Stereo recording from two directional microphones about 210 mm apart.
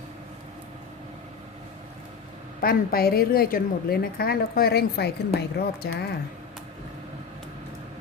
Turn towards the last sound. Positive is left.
turn(degrees=50)  # may be behind; listen again after turning